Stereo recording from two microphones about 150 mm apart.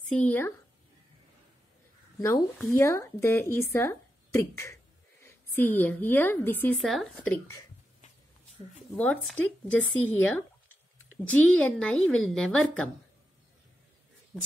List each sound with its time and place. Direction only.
0.1 s speech: 10° left (ahead or behind)
2.1 s a woman's voice: 25° left (ahead or behind)
6.7 s a woman's voice: centre (ahead or behind)
8.7 s a woman's voice: 10° left (ahead or behind)